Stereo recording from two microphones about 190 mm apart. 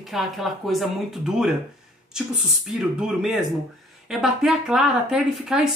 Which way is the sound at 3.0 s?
5° right (ahead or behind).